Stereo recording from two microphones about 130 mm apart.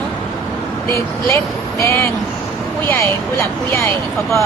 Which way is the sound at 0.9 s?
20° left (ahead or behind).